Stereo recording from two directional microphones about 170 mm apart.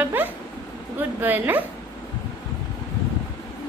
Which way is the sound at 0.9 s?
10° right (ahead or behind).